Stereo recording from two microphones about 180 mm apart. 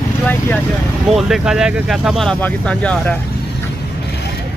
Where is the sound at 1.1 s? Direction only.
5° right (ahead or behind).